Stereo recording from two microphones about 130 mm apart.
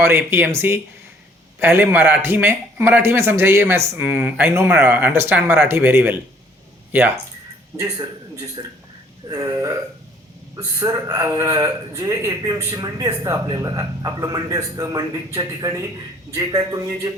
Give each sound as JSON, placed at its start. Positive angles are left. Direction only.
{"t": 0.0, "sound": "a man's voice", "side_deg": -20}
{"t": 7.8, "sound": "a man's voice", "side_deg": -25}